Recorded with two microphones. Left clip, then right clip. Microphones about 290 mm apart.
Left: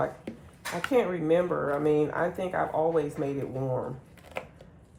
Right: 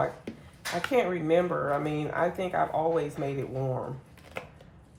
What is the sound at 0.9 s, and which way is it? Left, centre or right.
Speech, centre.